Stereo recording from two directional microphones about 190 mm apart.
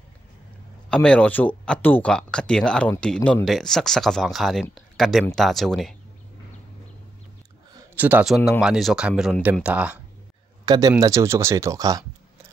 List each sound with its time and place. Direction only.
0.8 s speech: 5° left (ahead or behind)
7.9 s speech: 10° right (ahead or behind)
10.6 s speech: 20° right (ahead or behind)